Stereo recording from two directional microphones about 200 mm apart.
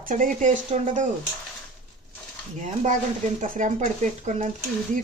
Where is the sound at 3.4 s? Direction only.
40° right (ahead or behind).